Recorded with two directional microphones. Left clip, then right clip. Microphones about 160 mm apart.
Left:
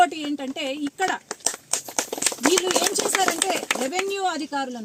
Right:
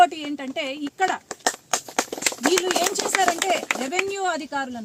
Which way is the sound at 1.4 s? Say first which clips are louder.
Right 4 dB; 10° left (ahead or behind).